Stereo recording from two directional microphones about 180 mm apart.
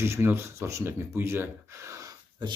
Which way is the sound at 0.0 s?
15° right (ahead or behind).